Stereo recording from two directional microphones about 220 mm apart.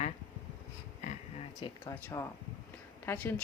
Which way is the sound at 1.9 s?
10° left (ahead or behind).